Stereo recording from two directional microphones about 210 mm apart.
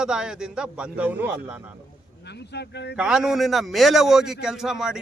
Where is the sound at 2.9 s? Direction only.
5° right (ahead or behind).